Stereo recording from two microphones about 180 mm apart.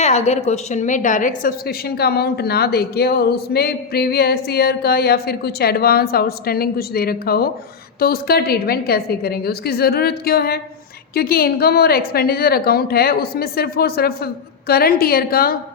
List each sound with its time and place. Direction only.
0.0 s a woman's voice: 40° left (ahead or behind); by 15.5 s 55° left (ahead or behind)